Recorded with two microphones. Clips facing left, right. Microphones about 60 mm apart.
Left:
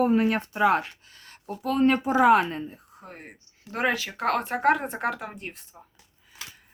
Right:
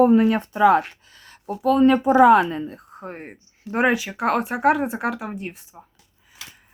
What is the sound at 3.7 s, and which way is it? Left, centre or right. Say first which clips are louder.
Speech: right 6 dB; centre.